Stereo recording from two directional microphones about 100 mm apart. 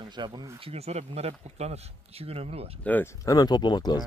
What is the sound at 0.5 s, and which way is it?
Speech, 80° right.